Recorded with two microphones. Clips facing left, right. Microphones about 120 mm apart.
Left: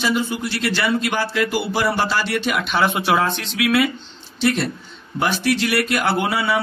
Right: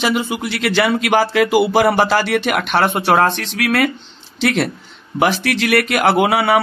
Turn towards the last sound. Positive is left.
turn(degrees=-65)  # may be behind; listen again after turning